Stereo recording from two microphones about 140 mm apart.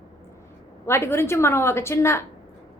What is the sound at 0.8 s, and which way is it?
A woman's voice, 20° left (ahead or behind).